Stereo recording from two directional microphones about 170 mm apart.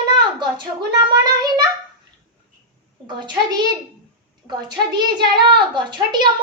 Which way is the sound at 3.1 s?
25° right (ahead or behind).